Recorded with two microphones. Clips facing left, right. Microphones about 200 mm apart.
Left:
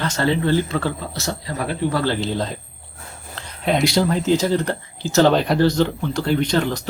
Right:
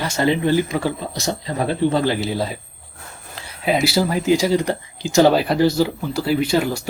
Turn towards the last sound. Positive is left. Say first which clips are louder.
# right 1 dB
turn(degrees=-10)  # may be behind; listen again after turning